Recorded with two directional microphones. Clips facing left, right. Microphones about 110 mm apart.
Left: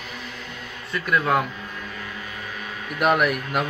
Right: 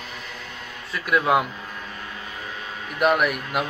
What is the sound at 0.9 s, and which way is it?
Speech, 5° right (ahead or behind).